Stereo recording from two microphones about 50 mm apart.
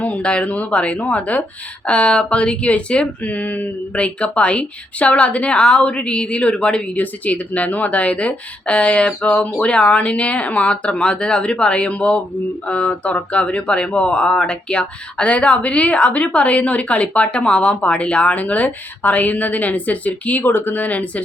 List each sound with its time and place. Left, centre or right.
0.0 s speech: left
6.9 s speech: left